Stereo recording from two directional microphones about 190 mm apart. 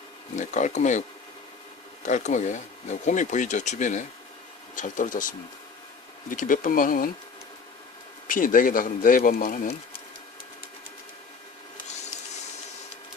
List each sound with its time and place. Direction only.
0.3 s speech: 40° left (ahead or behind)
2.0 s speech: 40° left (ahead or behind)
6.3 s speech: 45° left (ahead or behind)
8.3 s speech: 45° left (ahead or behind)